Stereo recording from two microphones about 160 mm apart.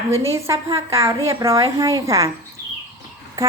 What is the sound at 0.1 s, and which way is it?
A woman's voice, 15° right (ahead or behind).